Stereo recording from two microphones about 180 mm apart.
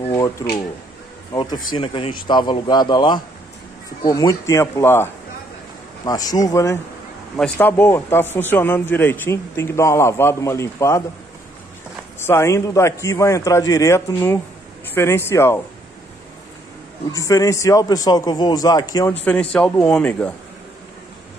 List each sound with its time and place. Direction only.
0.1 s speech: 15° left (ahead or behind)
12.2 s speech: 15° left (ahead or behind)
17.1 s speech: 20° left (ahead or behind)
19.2 s speech: 5° left (ahead or behind)